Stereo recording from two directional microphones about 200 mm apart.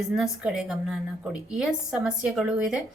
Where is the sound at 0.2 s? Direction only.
5° right (ahead or behind).